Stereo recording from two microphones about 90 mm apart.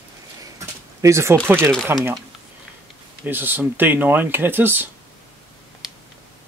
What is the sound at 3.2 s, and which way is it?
Speech, 20° right (ahead or behind).